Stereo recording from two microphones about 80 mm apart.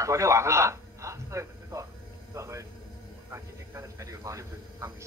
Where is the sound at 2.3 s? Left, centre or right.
Right.